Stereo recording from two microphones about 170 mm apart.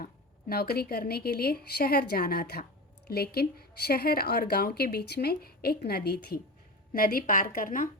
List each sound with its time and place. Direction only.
0.0 s a woman's voice: 65° left (ahead or behind)